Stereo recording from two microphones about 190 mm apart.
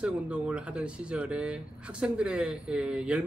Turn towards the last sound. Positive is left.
turn(degrees=-5)  # may be behind; listen again after turning